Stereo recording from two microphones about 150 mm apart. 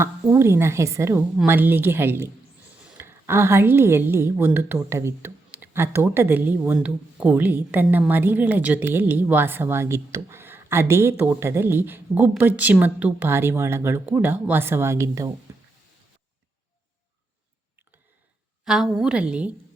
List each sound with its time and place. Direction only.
0.0 s speech: 15° right (ahead or behind)
15.5 s a sound: 20° right (ahead or behind)
18.6 s a woman's voice: 5° right (ahead or behind)